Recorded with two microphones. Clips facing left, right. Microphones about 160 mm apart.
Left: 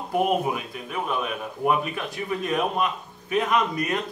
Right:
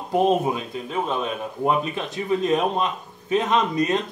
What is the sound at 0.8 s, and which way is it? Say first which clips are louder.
Speech: right 2 dB; 25° right (ahead or behind).